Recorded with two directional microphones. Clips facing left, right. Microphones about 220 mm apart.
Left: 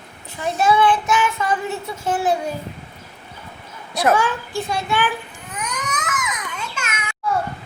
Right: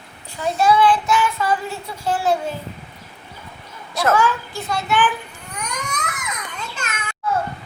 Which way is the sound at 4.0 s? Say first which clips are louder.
Even; 15° left (ahead or behind).